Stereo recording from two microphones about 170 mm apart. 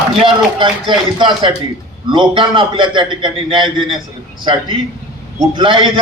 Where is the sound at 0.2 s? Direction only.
30° right (ahead or behind).